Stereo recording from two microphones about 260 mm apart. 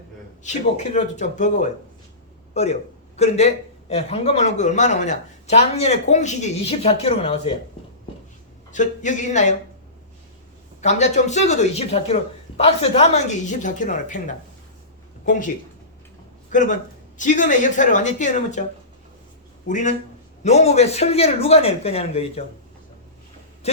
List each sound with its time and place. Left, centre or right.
0.4 s a man's voice: left
8.7 s a man's voice: left
10.8 s a man's voice: left
16.5 s a man's voice: left
19.6 s a man's voice: left
23.6 s a sound: left